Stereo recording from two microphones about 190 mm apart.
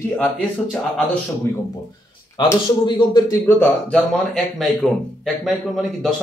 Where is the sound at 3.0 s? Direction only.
20° left (ahead or behind).